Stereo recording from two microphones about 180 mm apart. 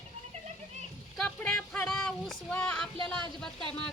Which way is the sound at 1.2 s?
5° left (ahead or behind).